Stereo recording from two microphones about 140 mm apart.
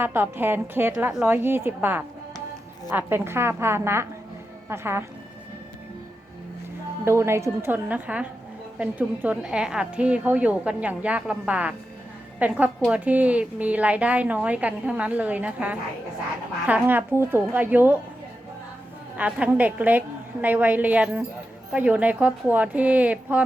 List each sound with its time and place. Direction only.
0.0 s a woman's voice: 15° right (ahead or behind)
7.0 s a woman's voice: 20° right (ahead or behind)
19.1 s a woman's voice: 10° right (ahead or behind)